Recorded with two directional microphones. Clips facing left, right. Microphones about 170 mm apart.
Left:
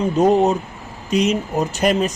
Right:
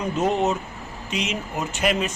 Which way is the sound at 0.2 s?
35° left (ahead or behind).